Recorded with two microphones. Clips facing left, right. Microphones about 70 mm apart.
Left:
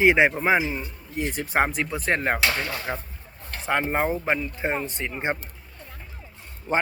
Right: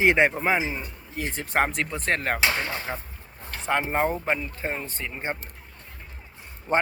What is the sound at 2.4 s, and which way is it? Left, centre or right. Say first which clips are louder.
Speech: even; right.